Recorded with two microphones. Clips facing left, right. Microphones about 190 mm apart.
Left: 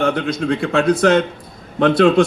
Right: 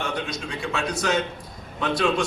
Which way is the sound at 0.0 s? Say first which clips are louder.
Left 11 dB; 55° left (ahead or behind).